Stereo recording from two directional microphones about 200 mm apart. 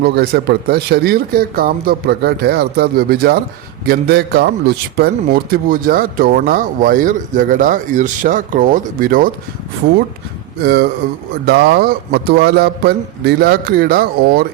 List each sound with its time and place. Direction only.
0.0 s speech: 55° right (ahead or behind)
10.6 s speech: 55° right (ahead or behind)